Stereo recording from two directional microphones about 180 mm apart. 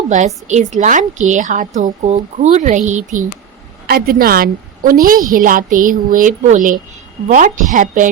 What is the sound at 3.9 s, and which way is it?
A woman's voice, 60° right (ahead or behind).